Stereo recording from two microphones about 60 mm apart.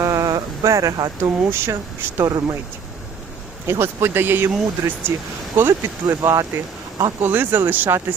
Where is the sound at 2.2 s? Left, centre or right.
Right.